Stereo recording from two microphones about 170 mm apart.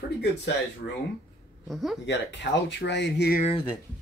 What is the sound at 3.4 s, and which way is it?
Speech, 30° left (ahead or behind).